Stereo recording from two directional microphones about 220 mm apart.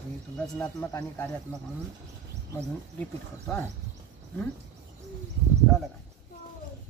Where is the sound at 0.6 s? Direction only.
10° left (ahead or behind).